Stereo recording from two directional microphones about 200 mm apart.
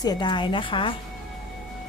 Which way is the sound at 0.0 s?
20° left (ahead or behind).